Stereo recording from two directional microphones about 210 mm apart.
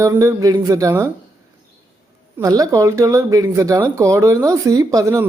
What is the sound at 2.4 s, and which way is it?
Speech, 15° right (ahead or behind).